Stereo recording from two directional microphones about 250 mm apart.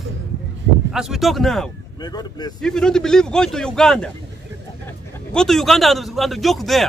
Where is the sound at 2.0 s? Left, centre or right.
Centre.